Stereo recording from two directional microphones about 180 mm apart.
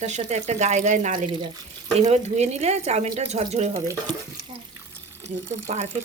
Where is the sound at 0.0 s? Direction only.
40° right (ahead or behind).